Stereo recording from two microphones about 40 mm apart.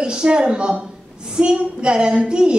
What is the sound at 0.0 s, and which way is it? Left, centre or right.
A woman's voice, right.